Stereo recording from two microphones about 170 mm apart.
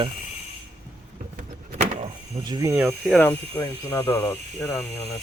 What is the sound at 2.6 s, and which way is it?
Speech, 10° right (ahead or behind).